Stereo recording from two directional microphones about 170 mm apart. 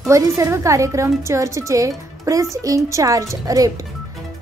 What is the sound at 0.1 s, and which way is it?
Speech, 20° right (ahead or behind).